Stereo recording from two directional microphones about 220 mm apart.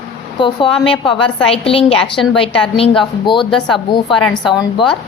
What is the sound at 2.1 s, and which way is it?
Speech, centre (ahead or behind).